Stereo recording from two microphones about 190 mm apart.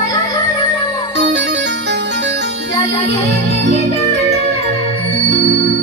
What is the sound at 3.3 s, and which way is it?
Music, 65° right (ahead or behind).